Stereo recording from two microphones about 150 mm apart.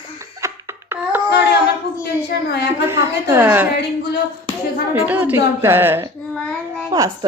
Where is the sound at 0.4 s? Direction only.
15° right (ahead or behind).